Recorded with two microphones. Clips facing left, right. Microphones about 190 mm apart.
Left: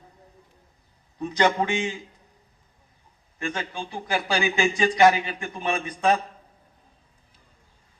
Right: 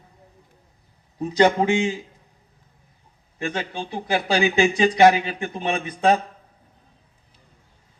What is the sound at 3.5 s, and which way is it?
A man's voice, 35° right (ahead or behind).